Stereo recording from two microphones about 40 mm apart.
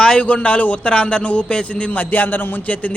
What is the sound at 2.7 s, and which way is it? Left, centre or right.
Speech, left.